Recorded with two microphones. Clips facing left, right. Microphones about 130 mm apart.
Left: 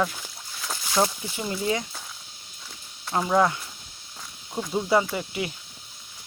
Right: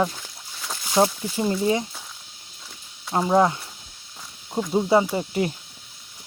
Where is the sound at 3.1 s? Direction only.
25° right (ahead or behind).